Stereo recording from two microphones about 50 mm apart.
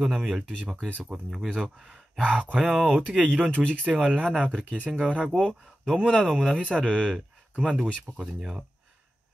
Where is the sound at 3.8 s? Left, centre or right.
Right.